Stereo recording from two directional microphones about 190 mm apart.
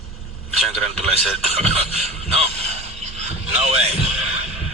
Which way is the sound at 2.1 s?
35° right (ahead or behind).